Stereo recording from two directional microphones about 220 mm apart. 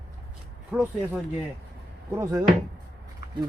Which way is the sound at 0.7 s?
5° right (ahead or behind).